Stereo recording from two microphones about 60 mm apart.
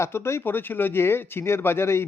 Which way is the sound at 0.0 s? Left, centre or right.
Left.